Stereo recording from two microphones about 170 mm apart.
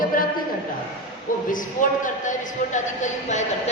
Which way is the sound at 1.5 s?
50° left (ahead or behind).